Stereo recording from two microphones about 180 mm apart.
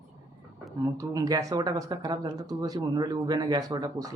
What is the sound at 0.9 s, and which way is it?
Speech, 20° right (ahead or behind).